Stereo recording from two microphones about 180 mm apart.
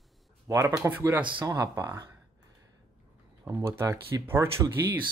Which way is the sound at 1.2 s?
25° right (ahead or behind).